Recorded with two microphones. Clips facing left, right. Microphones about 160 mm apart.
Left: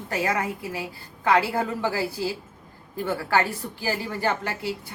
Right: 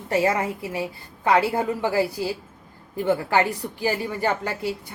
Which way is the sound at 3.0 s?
20° right (ahead or behind).